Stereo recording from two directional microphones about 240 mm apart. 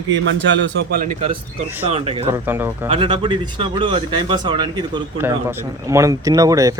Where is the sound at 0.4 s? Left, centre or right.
Right.